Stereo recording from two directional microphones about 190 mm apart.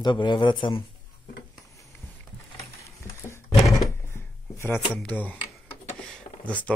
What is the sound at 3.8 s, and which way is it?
Dishes, 15° left (ahead or behind).